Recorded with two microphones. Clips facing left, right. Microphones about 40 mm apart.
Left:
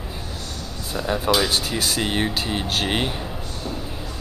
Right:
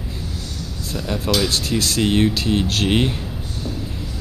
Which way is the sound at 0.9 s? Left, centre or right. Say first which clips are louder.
Left 1 dB; centre.